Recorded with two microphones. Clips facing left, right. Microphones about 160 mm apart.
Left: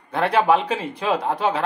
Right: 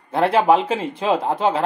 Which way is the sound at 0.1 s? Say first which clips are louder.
Right 2 dB; 25° right (ahead or behind).